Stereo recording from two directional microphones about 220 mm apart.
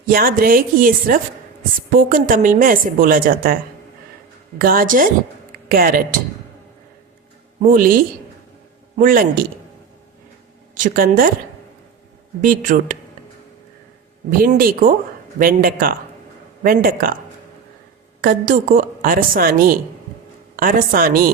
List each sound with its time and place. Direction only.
0.0 s a woman's voice: 40° right (ahead or behind)
7.6 s a woman's voice: 35° right (ahead or behind)
10.8 s a woman's voice: 40° right (ahead or behind)
12.4 s a woman's voice: 35° right (ahead or behind)
14.3 s a woman's voice: 40° right (ahead or behind)
18.2 s a woman's voice: 40° right (ahead or behind)